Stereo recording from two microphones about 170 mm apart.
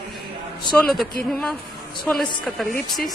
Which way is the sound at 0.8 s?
Centre (ahead or behind).